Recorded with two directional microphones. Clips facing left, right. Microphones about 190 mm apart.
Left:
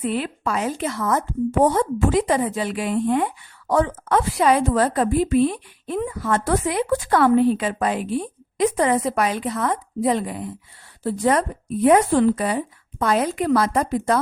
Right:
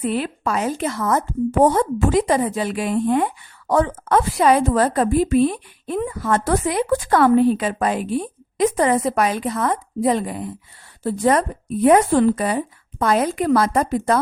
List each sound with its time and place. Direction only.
0.0 s a woman's voice: 40° right (ahead or behind)